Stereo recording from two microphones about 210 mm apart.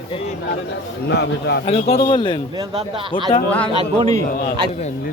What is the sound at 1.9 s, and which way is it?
Speech, 25° left (ahead or behind).